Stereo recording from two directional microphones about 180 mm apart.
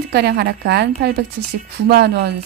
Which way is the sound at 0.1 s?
60° right (ahead or behind).